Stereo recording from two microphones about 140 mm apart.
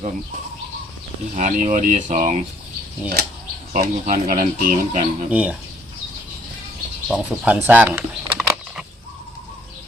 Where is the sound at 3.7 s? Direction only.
60° right (ahead or behind).